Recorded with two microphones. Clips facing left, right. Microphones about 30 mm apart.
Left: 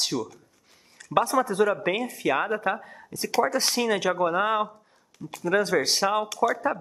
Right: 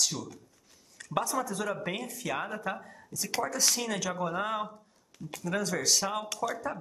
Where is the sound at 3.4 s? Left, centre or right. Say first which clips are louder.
Left 7 dB; left.